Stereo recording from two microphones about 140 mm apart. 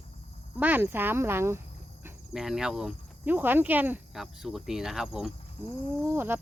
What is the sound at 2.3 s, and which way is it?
Speech, 5° right (ahead or behind).